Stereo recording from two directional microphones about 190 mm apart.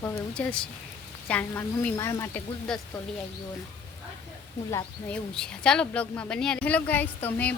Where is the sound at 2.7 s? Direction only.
Centre (ahead or behind).